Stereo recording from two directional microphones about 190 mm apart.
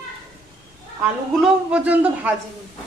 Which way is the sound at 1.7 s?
10° right (ahead or behind).